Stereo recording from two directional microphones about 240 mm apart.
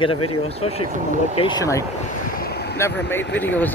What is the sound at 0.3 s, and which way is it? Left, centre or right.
Speech, left.